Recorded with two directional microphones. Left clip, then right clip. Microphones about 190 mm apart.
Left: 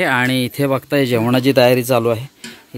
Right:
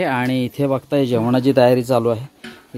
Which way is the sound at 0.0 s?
Centre (ahead or behind).